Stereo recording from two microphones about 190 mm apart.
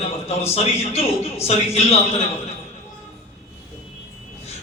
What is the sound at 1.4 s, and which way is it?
Speech, 35° left (ahead or behind).